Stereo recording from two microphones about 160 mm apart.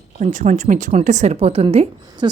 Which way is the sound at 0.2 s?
50° right (ahead or behind).